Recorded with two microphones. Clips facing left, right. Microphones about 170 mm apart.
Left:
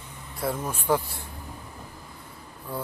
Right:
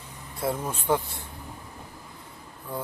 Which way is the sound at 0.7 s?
20° right (ahead or behind).